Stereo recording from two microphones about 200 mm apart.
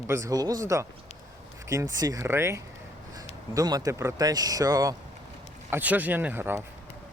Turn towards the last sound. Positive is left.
turn(degrees=-10)  # may be behind; listen again after turning